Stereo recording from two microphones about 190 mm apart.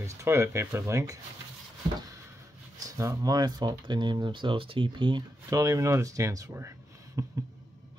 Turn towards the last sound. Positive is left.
turn(degrees=-15)  # may be behind; listen again after turning